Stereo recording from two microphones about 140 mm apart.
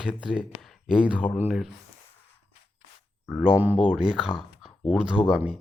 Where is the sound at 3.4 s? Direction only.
10° right (ahead or behind).